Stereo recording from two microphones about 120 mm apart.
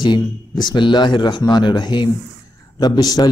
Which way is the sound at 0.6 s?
40° left (ahead or behind).